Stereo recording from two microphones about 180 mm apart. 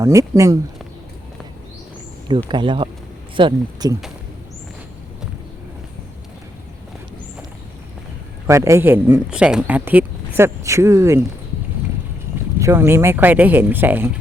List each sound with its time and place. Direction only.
0.0 s speech: 15° right (ahead or behind)
2.5 s speech: 25° right (ahead or behind)
8.4 s speech: 15° right (ahead or behind)
12.5 s speech: 15° right (ahead or behind)